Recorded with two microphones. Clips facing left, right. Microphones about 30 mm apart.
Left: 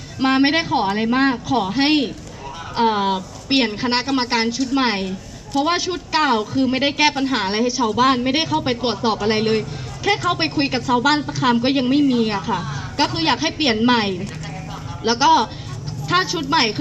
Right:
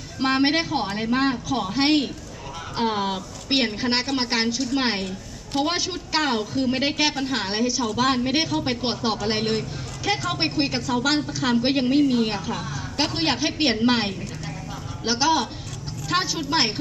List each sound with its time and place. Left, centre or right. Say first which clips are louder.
0.2 s a woman's voice: left 4 dB; left